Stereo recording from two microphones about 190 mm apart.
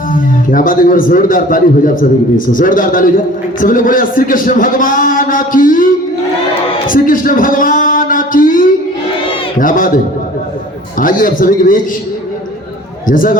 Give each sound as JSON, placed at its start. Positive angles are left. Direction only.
{"t": 0.5, "sound": "a man's voice", "side_deg": 45}
{"t": 6.8, "sound": "a sound", "side_deg": 45}
{"t": 9.6, "sound": "a man's voice", "side_deg": 45}
{"t": 11.0, "sound": "a man's voice", "side_deg": 45}
{"t": 13.1, "sound": "a man's voice", "side_deg": 45}